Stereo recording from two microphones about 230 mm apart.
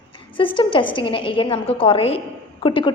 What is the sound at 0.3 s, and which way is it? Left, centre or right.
A woman's voice, left.